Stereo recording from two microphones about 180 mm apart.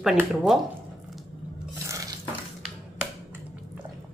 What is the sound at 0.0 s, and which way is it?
Speech, 5° right (ahead or behind).